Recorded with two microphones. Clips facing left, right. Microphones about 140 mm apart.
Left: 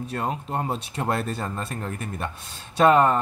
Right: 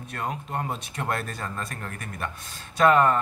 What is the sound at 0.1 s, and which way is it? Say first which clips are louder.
Speech: left 2 dB; 30° left (ahead or behind).